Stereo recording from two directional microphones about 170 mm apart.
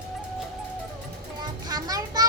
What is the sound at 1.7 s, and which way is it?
Speech, 20° right (ahead or behind).